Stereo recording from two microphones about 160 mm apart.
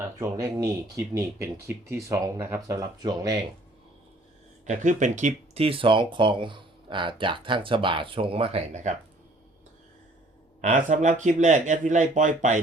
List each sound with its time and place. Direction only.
0.2 s speech: 20° right (ahead or behind)
4.6 s speech: 50° right (ahead or behind)
5.6 s speech: 35° right (ahead or behind)
10.6 s speech: 50° right (ahead or behind)